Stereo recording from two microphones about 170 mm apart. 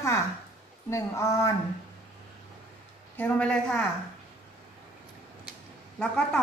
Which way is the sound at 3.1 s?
10° left (ahead or behind).